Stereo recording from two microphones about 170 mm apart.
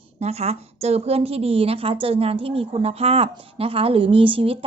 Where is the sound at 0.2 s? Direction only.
40° right (ahead or behind).